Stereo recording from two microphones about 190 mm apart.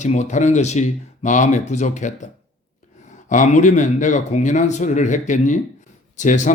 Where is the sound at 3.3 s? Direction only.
40° left (ahead or behind).